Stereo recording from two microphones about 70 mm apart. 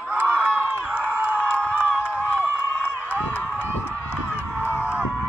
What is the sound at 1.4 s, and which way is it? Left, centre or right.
Crowd, left.